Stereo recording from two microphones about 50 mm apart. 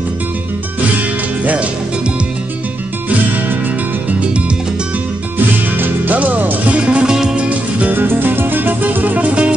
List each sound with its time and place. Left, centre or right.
0.9 s music: right
5.8 s music: right
6.8 s music: centre
7.9 s music: right